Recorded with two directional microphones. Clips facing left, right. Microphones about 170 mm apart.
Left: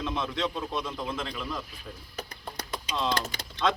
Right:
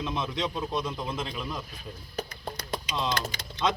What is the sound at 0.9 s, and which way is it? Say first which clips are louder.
Speech: right 1 dB; 10° right (ahead or behind).